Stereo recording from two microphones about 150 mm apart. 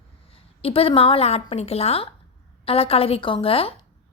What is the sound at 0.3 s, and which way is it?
A woman's voice, 40° left (ahead or behind).